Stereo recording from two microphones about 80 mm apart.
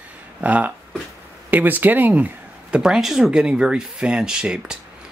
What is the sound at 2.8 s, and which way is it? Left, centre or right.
Speech, centre.